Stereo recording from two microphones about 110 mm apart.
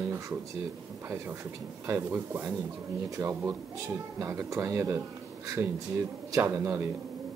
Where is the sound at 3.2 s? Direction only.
35° right (ahead or behind).